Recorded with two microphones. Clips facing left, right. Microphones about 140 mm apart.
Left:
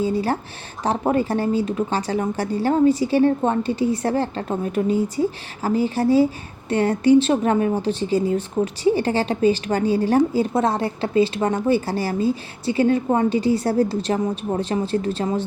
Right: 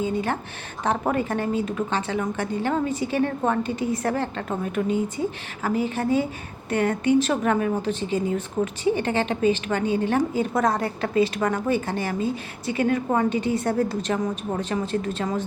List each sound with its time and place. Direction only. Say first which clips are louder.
0.0 s speech: left 4 dB; 35° left (ahead or behind)